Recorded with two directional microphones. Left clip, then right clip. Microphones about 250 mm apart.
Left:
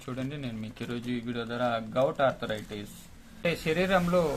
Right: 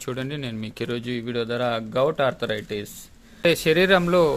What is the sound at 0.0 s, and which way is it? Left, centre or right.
Speech, right.